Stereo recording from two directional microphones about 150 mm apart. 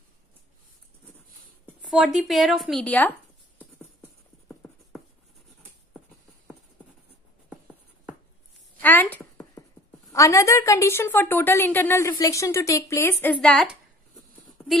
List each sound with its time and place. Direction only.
1.8 s speech: 5° right (ahead or behind)
8.8 s a sound: 10° left (ahead or behind)
10.1 s a woman's voice: 20° left (ahead or behind)